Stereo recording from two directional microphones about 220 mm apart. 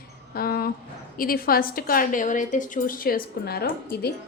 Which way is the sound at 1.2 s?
40° left (ahead or behind).